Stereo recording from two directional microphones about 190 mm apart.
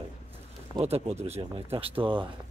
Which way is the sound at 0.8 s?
35° right (ahead or behind).